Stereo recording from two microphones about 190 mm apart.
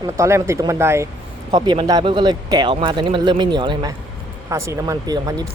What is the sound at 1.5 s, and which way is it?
Speech, 25° right (ahead or behind).